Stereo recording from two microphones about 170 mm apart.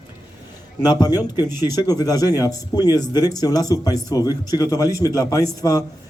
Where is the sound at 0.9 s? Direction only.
20° left (ahead or behind).